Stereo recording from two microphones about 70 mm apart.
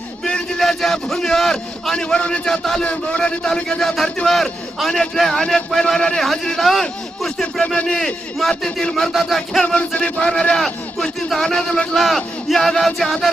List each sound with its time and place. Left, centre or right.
0.3 s a man's voice: centre
7.6 s a man's voice: centre
9.6 s a man's voice: centre